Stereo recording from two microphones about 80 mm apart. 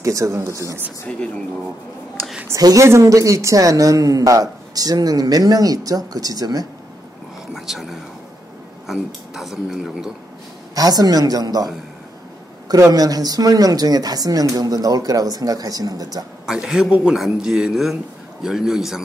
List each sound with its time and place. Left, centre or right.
0.0 s speech: right
1.0 s speech: centre
2.6 s speech: right
7.5 s speech: centre
10.7 s speech: right
12.9 s speech: right
16.4 s speech: centre